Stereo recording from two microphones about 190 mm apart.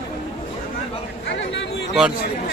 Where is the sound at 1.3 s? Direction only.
70° left (ahead or behind).